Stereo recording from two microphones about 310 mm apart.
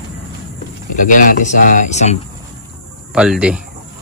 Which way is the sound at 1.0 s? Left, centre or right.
Left.